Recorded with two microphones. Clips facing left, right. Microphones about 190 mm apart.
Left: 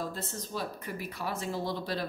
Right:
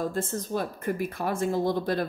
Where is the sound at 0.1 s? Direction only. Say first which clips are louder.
Right 8 dB; 50° right (ahead or behind).